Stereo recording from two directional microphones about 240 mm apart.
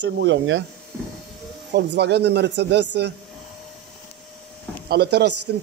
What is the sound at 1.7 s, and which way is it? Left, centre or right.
Speech, right.